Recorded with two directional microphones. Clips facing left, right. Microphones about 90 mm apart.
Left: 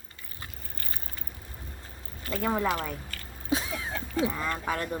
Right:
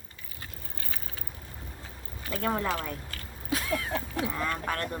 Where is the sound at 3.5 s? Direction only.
20° left (ahead or behind).